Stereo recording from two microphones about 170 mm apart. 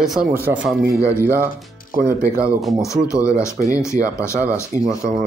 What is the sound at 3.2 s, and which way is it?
Speech, 15° left (ahead or behind).